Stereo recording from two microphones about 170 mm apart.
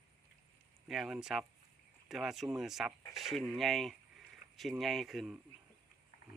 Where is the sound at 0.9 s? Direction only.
Centre (ahead or behind).